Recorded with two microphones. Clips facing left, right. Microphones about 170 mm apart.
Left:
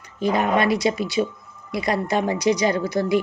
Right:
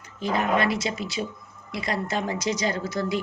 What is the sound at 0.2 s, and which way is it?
Speech, 15° left (ahead or behind).